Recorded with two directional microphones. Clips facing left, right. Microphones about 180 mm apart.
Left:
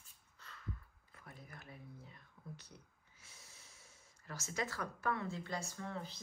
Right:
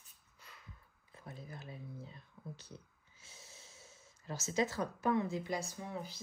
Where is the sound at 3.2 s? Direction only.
25° right (ahead or behind); by 6.2 s 10° right (ahead or behind).